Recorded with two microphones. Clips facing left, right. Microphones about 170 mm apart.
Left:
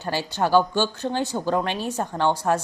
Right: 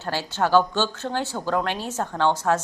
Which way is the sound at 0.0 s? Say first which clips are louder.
Left 1 dB; 15° left (ahead or behind).